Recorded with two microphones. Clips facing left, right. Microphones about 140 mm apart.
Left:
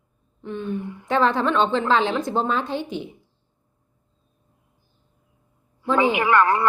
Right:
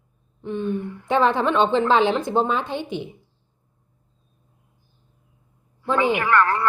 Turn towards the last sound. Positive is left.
turn(degrees=15)  # may be behind; listen again after turning